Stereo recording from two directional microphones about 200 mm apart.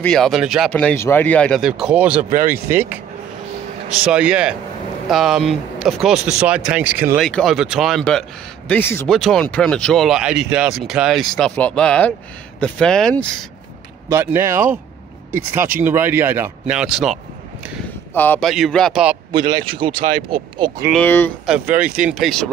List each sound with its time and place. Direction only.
0.0 s speech: centre (ahead or behind)
4.1 s speech: 5° right (ahead or behind)
7.2 s speech: centre (ahead or behind)
14.0 s speech: 15° right (ahead or behind)
18.1 s speech: 10° left (ahead or behind)
19.3 s speech: 25° right (ahead or behind)
20.9 s speech: 10° left (ahead or behind)
21.5 s speech: 5° right (ahead or behind)